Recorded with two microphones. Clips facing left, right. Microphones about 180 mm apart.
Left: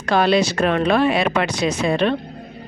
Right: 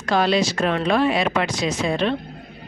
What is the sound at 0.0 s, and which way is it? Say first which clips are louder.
A woman's voice: left 3 dB; 65° left (ahead or behind).